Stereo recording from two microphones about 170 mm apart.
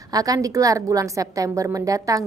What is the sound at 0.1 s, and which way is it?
A woman's voice, 20° right (ahead or behind).